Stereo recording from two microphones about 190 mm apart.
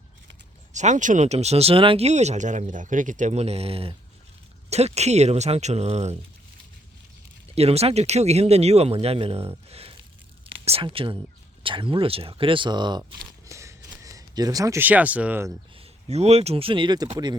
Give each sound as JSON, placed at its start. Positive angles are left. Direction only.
{"t": 0.7, "sound": "speech", "side_deg": -40}
{"t": 7.5, "sound": "speech", "side_deg": -35}
{"t": 15.8, "sound": "speech", "side_deg": -35}